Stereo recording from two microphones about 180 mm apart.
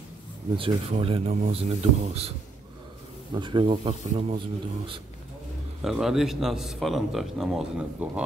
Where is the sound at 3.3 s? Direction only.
25° right (ahead or behind).